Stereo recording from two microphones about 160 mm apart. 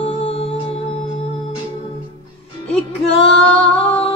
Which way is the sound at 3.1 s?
35° left (ahead or behind).